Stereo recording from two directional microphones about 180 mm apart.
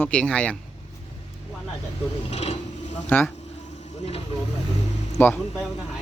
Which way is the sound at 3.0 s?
10° left (ahead or behind).